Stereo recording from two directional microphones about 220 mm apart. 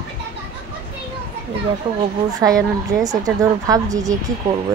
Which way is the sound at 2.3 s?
15° right (ahead or behind).